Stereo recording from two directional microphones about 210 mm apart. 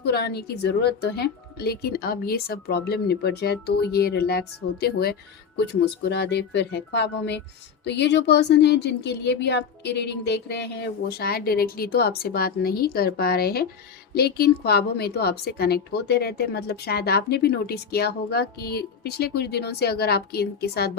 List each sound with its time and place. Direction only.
0.0 s a woman's voice: 50° left (ahead or behind)